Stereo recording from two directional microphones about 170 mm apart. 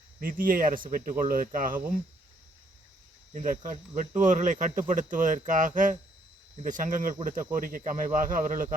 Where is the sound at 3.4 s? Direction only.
45° right (ahead or behind).